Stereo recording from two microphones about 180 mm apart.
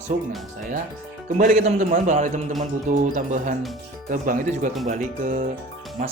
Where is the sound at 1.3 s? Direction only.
45° right (ahead or behind).